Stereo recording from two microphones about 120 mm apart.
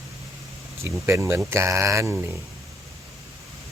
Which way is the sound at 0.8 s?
20° right (ahead or behind).